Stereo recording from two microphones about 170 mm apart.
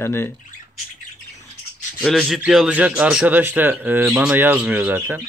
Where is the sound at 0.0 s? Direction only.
15° left (ahead or behind).